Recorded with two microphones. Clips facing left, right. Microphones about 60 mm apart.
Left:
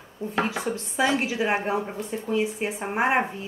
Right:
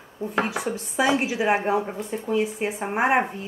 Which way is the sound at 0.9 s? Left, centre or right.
Centre.